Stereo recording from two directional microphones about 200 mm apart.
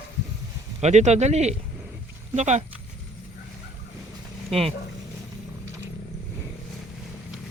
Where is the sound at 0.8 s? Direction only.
35° right (ahead or behind).